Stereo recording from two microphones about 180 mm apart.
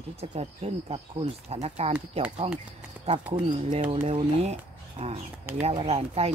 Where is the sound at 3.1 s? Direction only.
35° right (ahead or behind).